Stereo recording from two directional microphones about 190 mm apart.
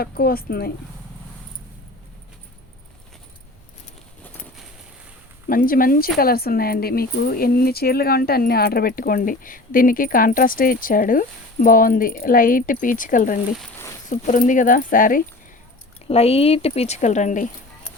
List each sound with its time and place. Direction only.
0.0 s speech: 55° left (ahead or behind)
5.5 s speech: 50° left (ahead or behind)
16.0 s speech: 30° left (ahead or behind)